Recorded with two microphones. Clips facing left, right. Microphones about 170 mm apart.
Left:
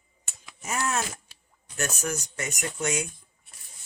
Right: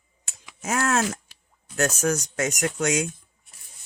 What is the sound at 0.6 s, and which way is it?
Speech, 90° right.